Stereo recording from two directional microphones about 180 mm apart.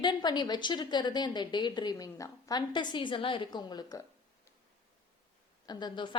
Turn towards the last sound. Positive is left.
turn(degrees=25)  # may be behind; listen again after turning